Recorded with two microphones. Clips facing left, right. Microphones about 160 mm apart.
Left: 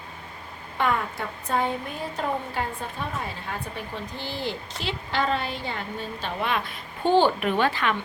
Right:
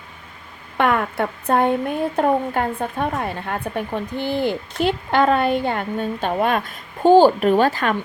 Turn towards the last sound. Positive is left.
turn(degrees=-45)  # may be behind; listen again after turning